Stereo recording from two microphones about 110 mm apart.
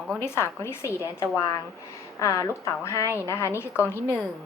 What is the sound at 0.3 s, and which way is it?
A woman's voice, 25° left (ahead or behind).